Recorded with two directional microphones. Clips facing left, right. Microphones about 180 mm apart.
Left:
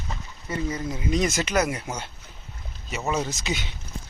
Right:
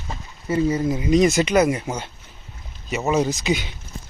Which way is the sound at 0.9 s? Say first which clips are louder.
Right 7 dB; 5° right (ahead or behind).